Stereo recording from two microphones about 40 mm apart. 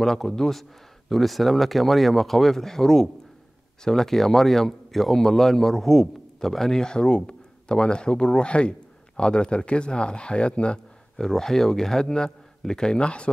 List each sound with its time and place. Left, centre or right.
0.0 s speech: centre; by 10.8 s left
11.1 s a man's voice: centre; by 13.3 s left